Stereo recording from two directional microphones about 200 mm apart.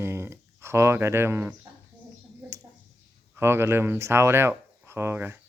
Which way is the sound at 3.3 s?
10° right (ahead or behind).